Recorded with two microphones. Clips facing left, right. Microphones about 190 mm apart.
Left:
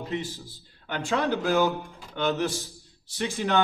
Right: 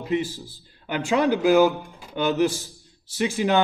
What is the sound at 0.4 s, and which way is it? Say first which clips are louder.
Speech: right 4 dB; 10° right (ahead or behind).